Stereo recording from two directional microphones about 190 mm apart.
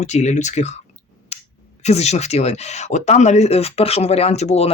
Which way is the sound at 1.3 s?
30° left (ahead or behind).